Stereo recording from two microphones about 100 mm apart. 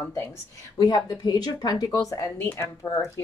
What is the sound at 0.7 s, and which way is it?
A woman's voice, 40° left (ahead or behind).